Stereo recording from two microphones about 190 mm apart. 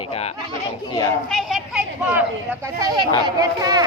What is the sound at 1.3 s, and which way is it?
Speech, centre (ahead or behind).